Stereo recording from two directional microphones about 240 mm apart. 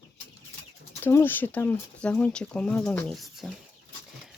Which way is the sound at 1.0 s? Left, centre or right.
Centre.